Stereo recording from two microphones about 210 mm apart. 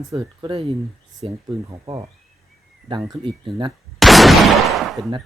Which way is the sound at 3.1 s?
25° right (ahead or behind).